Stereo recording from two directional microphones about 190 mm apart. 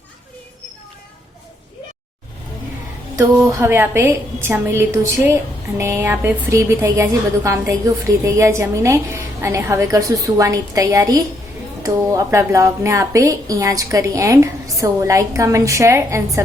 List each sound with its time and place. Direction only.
3.5 s a woman's voice: 15° right (ahead or behind)